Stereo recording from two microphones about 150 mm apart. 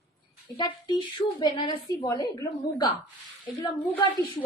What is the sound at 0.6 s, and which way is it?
A woman's voice, 30° left (ahead or behind).